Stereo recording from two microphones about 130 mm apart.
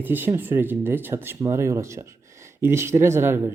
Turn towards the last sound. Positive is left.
turn(degrees=-20)  # may be behind; listen again after turning